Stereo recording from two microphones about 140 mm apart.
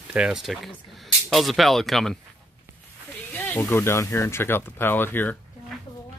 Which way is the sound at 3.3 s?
15° left (ahead or behind).